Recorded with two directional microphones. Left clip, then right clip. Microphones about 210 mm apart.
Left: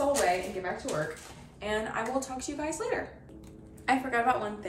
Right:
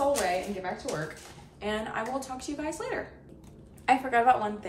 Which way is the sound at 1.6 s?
10° right (ahead or behind).